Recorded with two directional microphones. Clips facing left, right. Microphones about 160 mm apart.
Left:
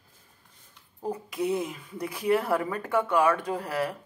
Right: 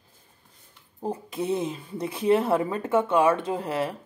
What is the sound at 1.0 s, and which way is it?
Speech, 25° right (ahead or behind).